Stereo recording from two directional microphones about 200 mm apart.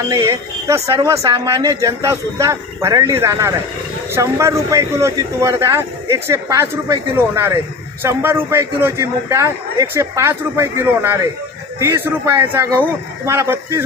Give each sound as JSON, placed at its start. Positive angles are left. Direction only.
{"t": 0.1, "sound": "a man's voice", "side_deg": -15}